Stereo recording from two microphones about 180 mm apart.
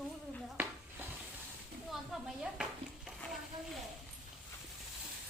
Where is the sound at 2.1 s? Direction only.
Centre (ahead or behind).